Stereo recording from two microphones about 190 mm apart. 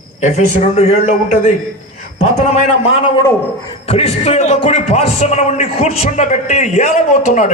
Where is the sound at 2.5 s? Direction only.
30° left (ahead or behind).